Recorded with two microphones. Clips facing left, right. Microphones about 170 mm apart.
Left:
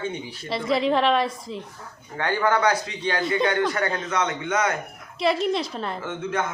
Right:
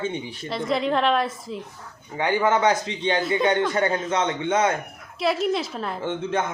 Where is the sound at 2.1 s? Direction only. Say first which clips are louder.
Right 2 dB; 15° right (ahead or behind).